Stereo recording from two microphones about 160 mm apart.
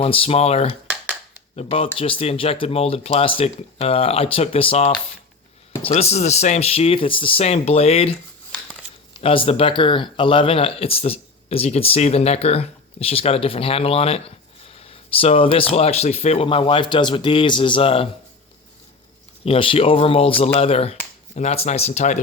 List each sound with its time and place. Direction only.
0.0 s speech: 35° left (ahead or behind)
2.0 s speech: 35° left (ahead or behind)
9.1 s speech: 35° left (ahead or behind)
19.5 s speech: 35° left (ahead or behind)